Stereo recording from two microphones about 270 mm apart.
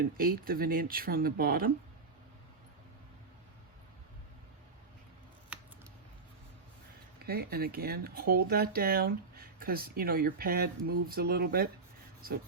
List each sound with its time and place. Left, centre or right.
0.0 s speech: right
7.3 s speech: right